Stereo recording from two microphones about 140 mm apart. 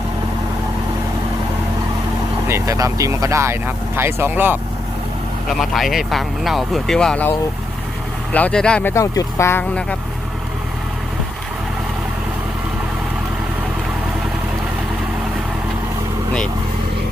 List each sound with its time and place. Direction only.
2.5 s speech: 25° right (ahead or behind)
5.5 s speech: centre (ahead or behind)
8.3 s speech: 10° left (ahead or behind)